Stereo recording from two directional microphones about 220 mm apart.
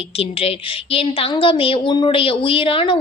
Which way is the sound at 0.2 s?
25° left (ahead or behind).